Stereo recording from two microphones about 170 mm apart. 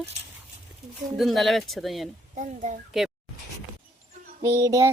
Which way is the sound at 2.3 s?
45° right (ahead or behind).